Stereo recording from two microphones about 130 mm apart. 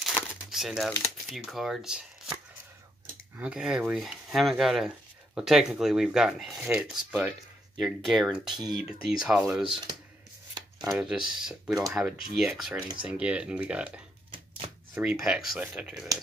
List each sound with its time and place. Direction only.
0.0 s crumpling: centre (ahead or behind)
1.3 s speech: centre (ahead or behind)
3.3 s speech: 5° right (ahead or behind)
8.5 s speech: 30° right (ahead or behind)
9.2 s speech: 5° right (ahead or behind)
10.9 s speech: 5° right (ahead or behind)